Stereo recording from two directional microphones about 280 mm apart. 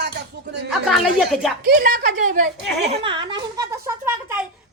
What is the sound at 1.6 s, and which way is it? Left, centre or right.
Speech, right.